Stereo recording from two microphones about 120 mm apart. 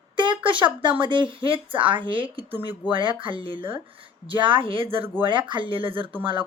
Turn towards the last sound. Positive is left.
turn(degrees=-45)  # may be behind; listen again after turning